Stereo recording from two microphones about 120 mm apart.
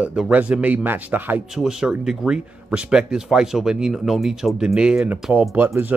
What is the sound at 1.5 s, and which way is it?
Speech, 5° right (ahead or behind).